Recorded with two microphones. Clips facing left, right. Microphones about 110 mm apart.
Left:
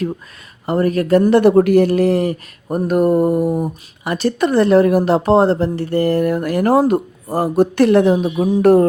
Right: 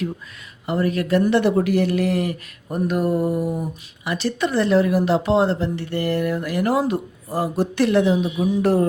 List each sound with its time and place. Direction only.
0.6 s speech: 45° left (ahead or behind)